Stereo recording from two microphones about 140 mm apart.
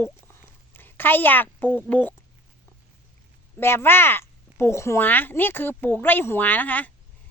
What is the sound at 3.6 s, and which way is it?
Speech, 15° left (ahead or behind).